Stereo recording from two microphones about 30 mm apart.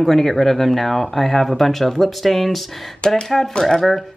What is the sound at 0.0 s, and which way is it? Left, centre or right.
Speech, centre.